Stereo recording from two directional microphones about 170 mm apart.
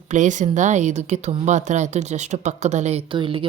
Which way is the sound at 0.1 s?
45° right (ahead or behind).